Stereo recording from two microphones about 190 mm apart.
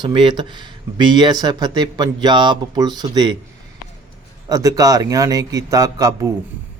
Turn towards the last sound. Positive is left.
turn(degrees=-20)  # may be behind; listen again after turning